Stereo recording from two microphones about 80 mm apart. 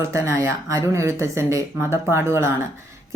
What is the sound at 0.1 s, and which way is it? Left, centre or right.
Speech, right.